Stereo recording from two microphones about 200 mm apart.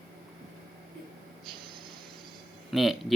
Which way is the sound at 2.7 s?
Centre (ahead or behind).